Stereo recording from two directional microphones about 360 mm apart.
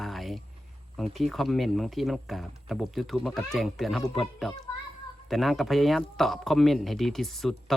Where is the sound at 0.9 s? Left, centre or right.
Centre.